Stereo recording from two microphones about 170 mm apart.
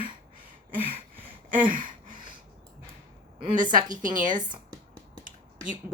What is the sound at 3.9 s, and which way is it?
Speech, 50° right (ahead or behind).